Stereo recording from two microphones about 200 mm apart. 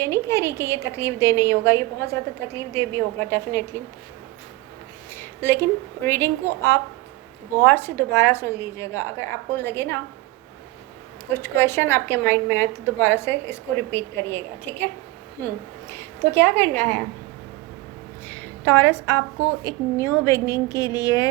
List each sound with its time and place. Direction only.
0.3 s a woman's voice: 15° left (ahead or behind)
5.1 s a sound: 10° left (ahead or behind)
6.1 s a woman's voice: 10° left (ahead or behind)
11.3 s a woman's voice: 10° left (ahead or behind)
16.3 s a woman's voice: 10° left (ahead or behind)
18.3 s a sound: 10° left (ahead or behind)
19.6 s a woman's voice: 15° left (ahead or behind)